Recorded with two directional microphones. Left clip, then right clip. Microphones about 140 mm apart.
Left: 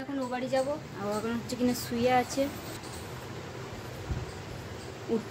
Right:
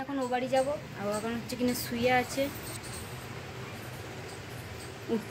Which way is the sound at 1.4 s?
15° left (ahead or behind).